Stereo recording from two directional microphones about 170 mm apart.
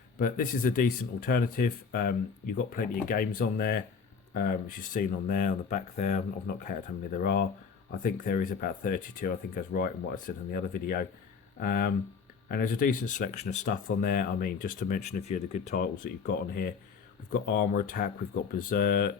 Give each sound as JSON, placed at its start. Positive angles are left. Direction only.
{"t": 0.2, "sound": "speech", "side_deg": 55}
{"t": 4.9, "sound": "speech", "side_deg": 55}
{"t": 15.7, "sound": "speech", "side_deg": 65}